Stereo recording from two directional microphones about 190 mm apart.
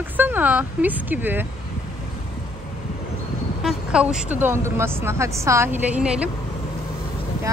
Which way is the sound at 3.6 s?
5° right (ahead or behind).